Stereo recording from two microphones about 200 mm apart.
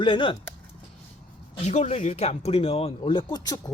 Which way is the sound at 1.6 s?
35° left (ahead or behind).